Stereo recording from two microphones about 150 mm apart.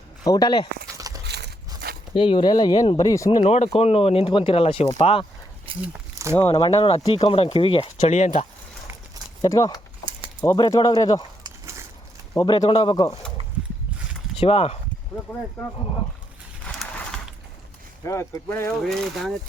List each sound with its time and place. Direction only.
0.3 s speech: 30° left (ahead or behind)
0.9 s a sound: 20° right (ahead or behind)
2.1 s speech: 35° left (ahead or behind)
3.5 s speech: 45° left (ahead or behind)
5.7 s a sound: 35° right (ahead or behind)
6.5 s speech: 40° left (ahead or behind)
9.4 s speech: 25° left (ahead or behind)
12.3 s speech: 25° left (ahead or behind)
14.3 s speech: 40° left (ahead or behind)
15.6 s speech: 5° left (ahead or behind)
16.6 s a sound: 5° left (ahead or behind)
18.0 s speech: 20° left (ahead or behind)
18.7 s speech: centre (ahead or behind)